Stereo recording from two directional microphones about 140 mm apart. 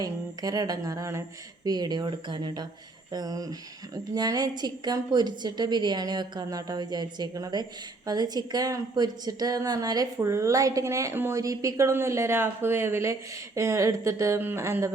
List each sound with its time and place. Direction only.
0.0 s a woman's voice: 25° right (ahead or behind)